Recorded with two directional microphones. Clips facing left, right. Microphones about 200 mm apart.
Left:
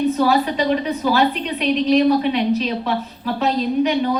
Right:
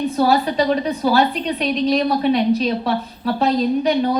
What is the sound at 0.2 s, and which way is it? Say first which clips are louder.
A woman's voice: right 1 dB; 35° right (ahead or behind).